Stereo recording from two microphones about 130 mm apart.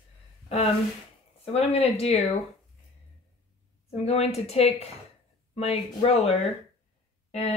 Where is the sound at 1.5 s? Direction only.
50° left (ahead or behind).